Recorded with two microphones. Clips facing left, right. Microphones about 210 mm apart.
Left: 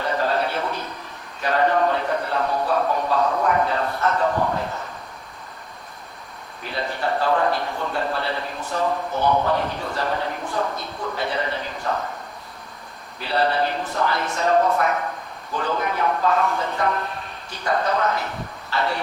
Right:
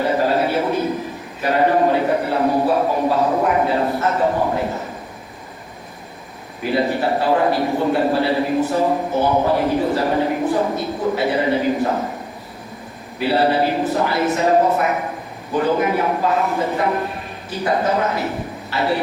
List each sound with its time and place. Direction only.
0.0 s a sound: 20° right (ahead or behind)
3.8 s a man's voice: 20° right (ahead or behind)
7.1 s a man's voice: 10° right (ahead or behind); by 10.0 s 25° right (ahead or behind)
10.0 s a man's voice: 15° right (ahead or behind)
13.4 s a man's voice: 15° right (ahead or behind)